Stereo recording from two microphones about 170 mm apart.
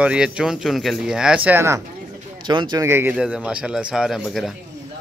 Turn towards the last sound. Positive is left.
turn(degrees=-5)  # may be behind; listen again after turning